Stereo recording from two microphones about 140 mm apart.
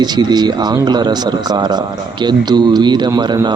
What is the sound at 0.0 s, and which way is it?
A man's voice, 30° right (ahead or behind).